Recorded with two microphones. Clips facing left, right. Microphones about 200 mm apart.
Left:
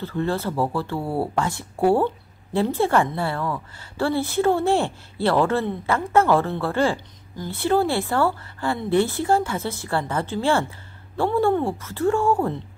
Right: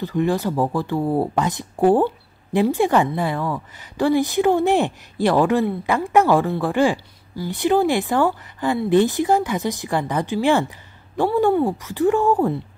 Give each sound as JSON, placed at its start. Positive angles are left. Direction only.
{"t": 0.0, "sound": "a woman's voice", "side_deg": -15}